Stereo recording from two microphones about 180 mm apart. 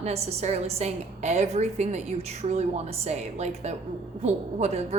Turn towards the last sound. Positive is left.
turn(degrees=-40)  # may be behind; listen again after turning